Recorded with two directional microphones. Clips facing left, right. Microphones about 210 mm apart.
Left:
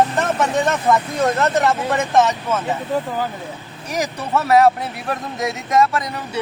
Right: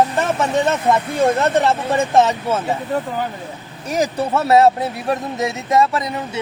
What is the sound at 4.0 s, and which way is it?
Speech, 25° right (ahead or behind).